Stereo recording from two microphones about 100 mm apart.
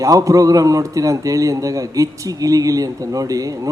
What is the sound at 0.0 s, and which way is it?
A man's voice, 35° right (ahead or behind).